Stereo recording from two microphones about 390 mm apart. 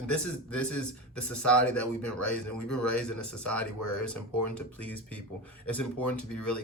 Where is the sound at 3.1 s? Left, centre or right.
Left.